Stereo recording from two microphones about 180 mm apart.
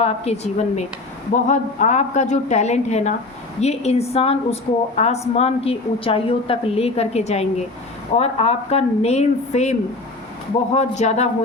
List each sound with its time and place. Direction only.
0.0 s a woman's voice: 35° left (ahead or behind)
10.8 s a woman's voice: 40° left (ahead or behind)